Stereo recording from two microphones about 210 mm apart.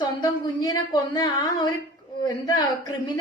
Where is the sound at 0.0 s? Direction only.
20° left (ahead or behind).